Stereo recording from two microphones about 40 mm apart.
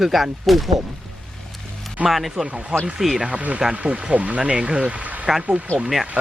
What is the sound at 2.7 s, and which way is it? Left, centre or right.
Speech, centre.